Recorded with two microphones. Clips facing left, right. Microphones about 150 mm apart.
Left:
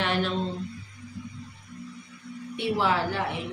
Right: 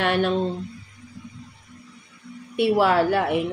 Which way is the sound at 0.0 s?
60° right (ahead or behind).